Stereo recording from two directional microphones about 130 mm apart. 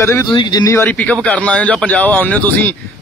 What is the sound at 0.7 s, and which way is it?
Speech, 15° left (ahead or behind).